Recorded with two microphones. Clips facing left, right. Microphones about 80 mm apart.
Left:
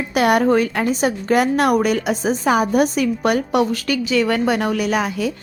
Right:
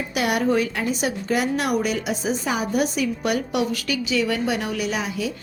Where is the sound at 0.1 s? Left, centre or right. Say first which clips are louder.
Left 6 dB; left.